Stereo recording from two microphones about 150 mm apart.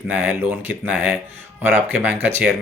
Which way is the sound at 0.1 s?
10° right (ahead or behind).